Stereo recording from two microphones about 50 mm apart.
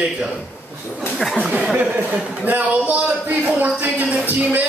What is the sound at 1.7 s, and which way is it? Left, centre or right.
A woman's voice, right.